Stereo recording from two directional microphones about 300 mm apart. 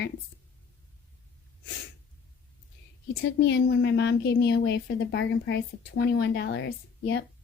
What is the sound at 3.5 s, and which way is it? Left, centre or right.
A woman's voice, left.